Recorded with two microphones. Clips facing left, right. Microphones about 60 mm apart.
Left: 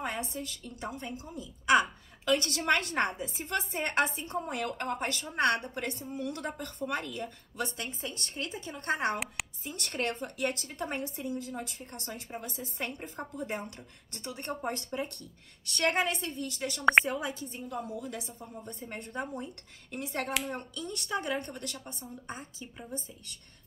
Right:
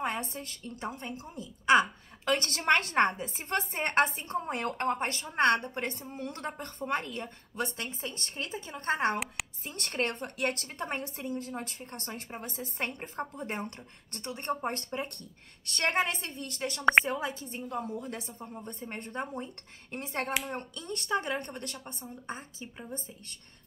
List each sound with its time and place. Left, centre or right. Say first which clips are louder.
0.0 s a woman's voice: right 2 dB; right
2.2 s a woman's voice: even; right
15.6 s a woman's voice: even; right